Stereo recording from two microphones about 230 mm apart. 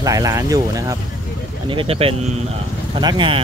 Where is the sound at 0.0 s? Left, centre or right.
Centre.